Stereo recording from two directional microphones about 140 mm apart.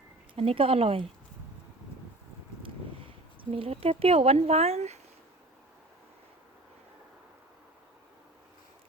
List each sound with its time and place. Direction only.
0.3 s speech: 40° right (ahead or behind)
3.5 s speech: 40° right (ahead or behind)